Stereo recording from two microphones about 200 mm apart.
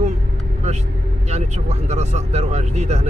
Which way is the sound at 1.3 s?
35° right (ahead or behind).